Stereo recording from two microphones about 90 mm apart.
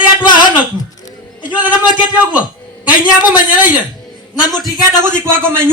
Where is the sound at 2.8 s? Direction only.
20° right (ahead or behind).